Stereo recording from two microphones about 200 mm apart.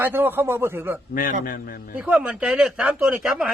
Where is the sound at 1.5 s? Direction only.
45° left (ahead or behind).